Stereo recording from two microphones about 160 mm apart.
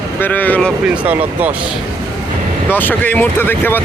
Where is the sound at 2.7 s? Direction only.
10° left (ahead or behind).